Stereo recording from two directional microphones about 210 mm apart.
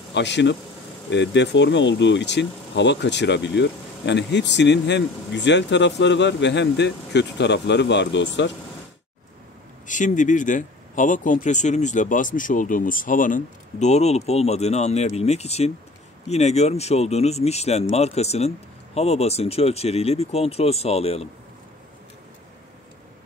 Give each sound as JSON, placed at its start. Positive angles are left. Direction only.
{"t": 0.1, "sound": "speech", "side_deg": 55}
{"t": 9.8, "sound": "speech", "side_deg": 35}